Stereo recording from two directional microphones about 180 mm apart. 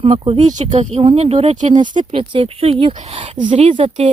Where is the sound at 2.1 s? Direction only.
30° right (ahead or behind).